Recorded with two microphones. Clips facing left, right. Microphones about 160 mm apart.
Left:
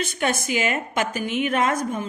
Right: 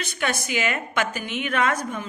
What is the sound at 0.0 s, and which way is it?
A woman's voice, 40° left (ahead or behind).